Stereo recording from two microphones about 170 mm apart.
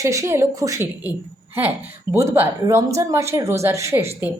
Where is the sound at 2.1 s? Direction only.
15° right (ahead or behind).